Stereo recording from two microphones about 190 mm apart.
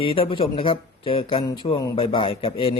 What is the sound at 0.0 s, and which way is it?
Speech, 30° left (ahead or behind).